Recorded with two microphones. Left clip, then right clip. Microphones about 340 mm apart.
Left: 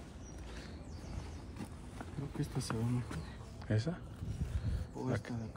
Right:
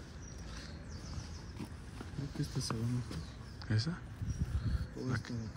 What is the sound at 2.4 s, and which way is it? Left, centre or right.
Speech, centre.